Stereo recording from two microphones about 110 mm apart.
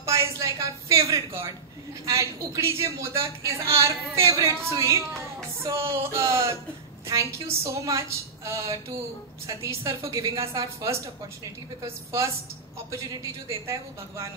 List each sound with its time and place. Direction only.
0.0 s a sound: 25° right (ahead or behind)
2.0 s a woman's voice: 30° right (ahead or behind)
12.9 s a woman's voice: 30° right (ahead or behind)